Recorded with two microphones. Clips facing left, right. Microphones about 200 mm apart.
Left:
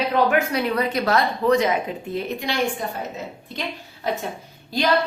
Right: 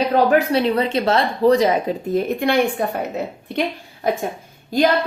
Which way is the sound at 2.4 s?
60° right (ahead or behind).